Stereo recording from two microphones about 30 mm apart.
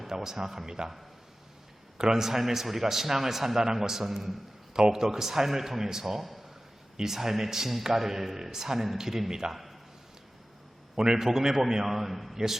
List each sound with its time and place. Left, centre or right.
0.2 s a man's voice: centre
2.0 s a man's voice: centre
4.7 s a man's voice: right
9.5 s a man's voice: centre
10.9 s a man's voice: right
11.2 s a man's voice: centre